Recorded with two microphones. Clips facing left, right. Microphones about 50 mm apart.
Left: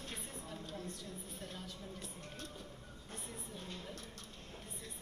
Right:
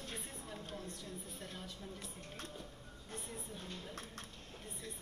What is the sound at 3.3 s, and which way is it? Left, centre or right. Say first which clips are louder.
Music: left 2 dB; right.